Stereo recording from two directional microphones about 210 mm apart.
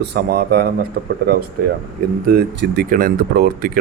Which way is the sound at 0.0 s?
50° right (ahead or behind).